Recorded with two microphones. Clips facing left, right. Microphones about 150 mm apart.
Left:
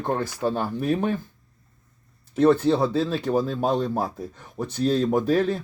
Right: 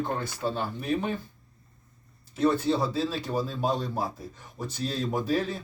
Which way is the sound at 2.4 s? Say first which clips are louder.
Left 6 dB; 55° left (ahead or behind).